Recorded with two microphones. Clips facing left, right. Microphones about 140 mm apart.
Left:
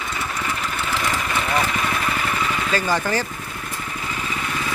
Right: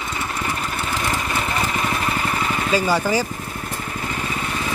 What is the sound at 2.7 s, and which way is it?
Speech, 10° right (ahead or behind).